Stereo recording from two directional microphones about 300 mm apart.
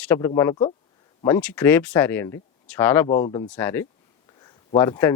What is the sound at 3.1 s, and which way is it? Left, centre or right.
Speech, centre.